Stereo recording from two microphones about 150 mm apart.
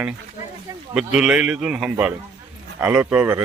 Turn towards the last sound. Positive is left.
turn(degrees=-10)  # may be behind; listen again after turning